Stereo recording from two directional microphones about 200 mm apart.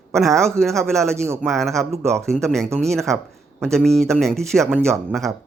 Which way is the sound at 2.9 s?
Centre (ahead or behind).